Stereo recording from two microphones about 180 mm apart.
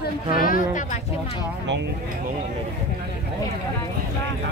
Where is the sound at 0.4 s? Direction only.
50° left (ahead or behind).